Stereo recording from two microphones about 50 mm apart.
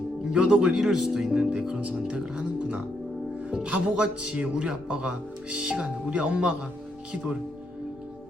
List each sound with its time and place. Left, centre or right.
0.3 s speech: centre
2.0 s music: centre
4.5 s speech: centre